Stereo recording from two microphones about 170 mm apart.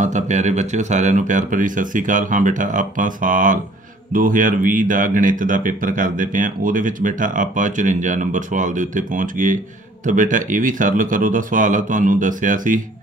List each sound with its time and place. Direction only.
0.0 s speech: 45° right (ahead or behind)